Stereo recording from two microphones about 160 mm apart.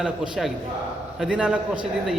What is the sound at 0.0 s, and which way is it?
A man's voice, centre (ahead or behind).